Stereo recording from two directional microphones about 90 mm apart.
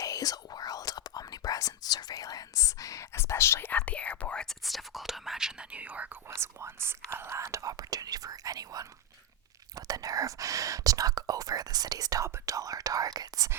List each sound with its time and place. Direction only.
0.0 s whispering: 45° left (ahead or behind)
3.7 s speech: 15° left (ahead or behind)
4.6 s speech: centre (ahead or behind)
6.3 s speech: 30° right (ahead or behind)